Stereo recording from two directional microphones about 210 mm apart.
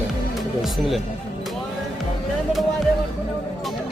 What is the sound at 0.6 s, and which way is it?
Speech, centre (ahead or behind).